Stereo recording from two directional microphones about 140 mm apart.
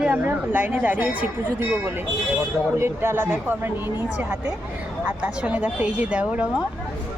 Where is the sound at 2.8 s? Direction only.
15° right (ahead or behind).